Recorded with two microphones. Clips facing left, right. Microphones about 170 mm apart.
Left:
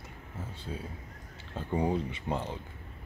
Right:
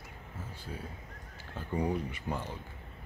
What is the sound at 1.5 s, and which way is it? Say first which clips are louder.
Speech: left 3 dB; 25° left (ahead or behind).